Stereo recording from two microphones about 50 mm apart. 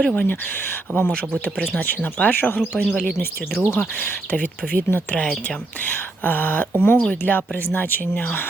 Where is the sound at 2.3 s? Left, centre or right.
Left.